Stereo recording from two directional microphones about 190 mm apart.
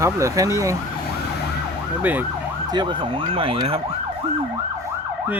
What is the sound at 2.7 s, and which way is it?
Speech, 25° right (ahead or behind).